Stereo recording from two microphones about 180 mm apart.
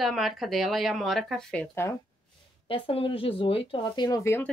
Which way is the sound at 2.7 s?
30° left (ahead or behind).